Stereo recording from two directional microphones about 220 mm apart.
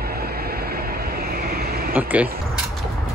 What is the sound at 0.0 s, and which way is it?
Vehicle, 45° right (ahead or behind).